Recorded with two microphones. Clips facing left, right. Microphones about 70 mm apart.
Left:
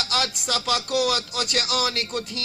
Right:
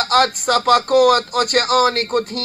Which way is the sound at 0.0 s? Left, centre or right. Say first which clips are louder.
Right 11 dB; right.